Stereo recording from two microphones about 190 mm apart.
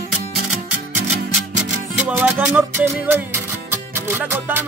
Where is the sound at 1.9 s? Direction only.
10° right (ahead or behind).